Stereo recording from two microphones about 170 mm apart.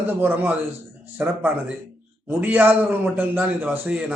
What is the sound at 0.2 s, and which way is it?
A man's voice, 10° right (ahead or behind).